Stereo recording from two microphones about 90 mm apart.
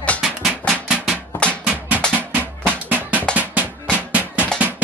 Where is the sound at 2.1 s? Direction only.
20° right (ahead or behind).